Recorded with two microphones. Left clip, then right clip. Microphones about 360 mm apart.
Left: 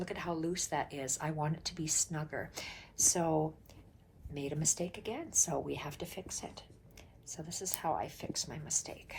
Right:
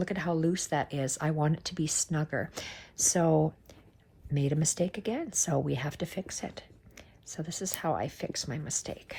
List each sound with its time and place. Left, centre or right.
0.0 s speech: centre
4.4 s speech: right